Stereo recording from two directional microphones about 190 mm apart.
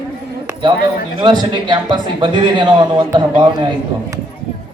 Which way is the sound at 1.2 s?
25° right (ahead or behind).